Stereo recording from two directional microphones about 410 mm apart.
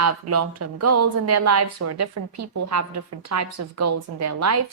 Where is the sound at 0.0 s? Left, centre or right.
Right.